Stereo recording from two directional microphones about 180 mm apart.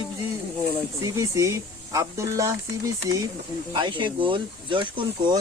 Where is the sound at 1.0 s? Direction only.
20° right (ahead or behind).